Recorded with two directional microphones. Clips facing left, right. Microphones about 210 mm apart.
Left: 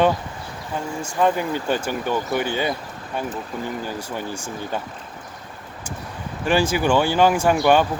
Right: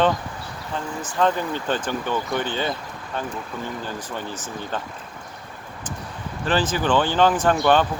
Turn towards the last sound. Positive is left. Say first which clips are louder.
# left 1 dB
turn(degrees=10)  # may be behind; listen again after turning